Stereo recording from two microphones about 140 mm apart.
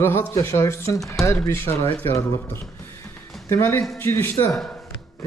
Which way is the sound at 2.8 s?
15° left (ahead or behind).